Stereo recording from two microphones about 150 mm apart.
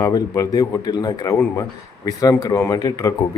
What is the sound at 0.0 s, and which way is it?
Speech, 25° left (ahead or behind).